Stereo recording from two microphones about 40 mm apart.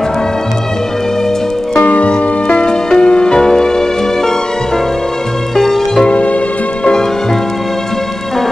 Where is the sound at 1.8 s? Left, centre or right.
Left; by 6.0 s centre.